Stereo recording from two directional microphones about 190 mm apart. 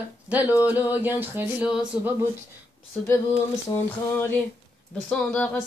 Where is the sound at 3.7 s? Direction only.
10° left (ahead or behind).